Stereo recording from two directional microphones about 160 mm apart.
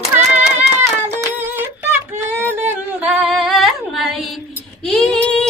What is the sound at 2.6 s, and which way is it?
Singing, 5° right (ahead or behind).